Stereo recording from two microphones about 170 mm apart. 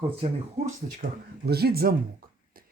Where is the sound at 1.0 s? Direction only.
60° right (ahead or behind).